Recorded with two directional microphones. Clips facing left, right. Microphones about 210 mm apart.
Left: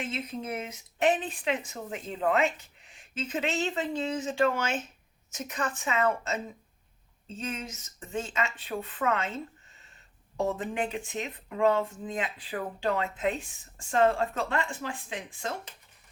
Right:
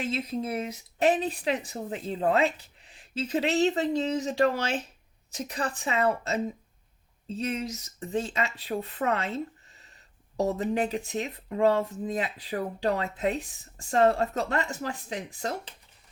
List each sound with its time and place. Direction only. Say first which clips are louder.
0.0 s speech: right 4 dB; 35° right (ahead or behind)